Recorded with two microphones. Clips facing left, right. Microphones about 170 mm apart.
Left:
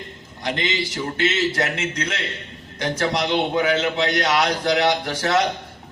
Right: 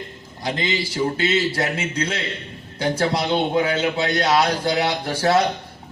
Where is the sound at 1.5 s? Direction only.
25° right (ahead or behind).